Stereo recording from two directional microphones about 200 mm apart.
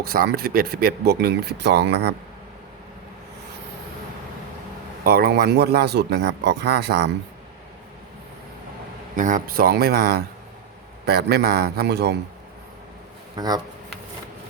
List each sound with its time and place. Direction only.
0.0 s speech: 50° right (ahead or behind)
5.0 s a man's voice: 50° right (ahead or behind)
9.1 s speech: 40° right (ahead or behind); by 12.1 s 55° right (ahead or behind)
13.3 s speech: 20° right (ahead or behind)